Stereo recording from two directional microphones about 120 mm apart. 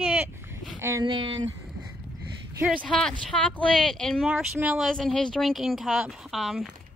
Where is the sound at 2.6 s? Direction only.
5° left (ahead or behind).